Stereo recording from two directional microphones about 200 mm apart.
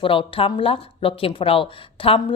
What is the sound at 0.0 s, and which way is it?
Speech, 25° left (ahead or behind).